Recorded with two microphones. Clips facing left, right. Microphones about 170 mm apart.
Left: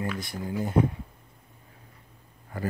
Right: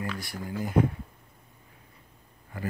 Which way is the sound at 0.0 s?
20° left (ahead or behind).